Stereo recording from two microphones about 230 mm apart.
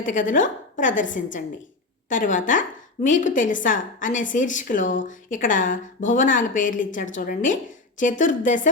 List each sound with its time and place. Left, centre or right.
0.0 s a woman's voice: left